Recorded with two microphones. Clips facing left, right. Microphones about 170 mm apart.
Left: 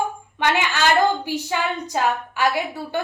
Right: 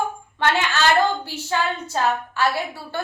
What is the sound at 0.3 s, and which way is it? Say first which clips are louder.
A woman's voice: even; 15° left (ahead or behind).